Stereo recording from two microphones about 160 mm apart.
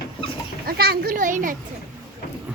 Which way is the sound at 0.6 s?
80° right.